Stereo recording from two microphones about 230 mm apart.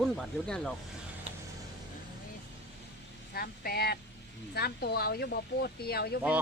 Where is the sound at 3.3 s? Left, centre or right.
Left.